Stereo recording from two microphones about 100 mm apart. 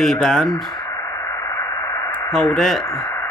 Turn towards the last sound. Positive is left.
turn(degrees=25)  # may be behind; listen again after turning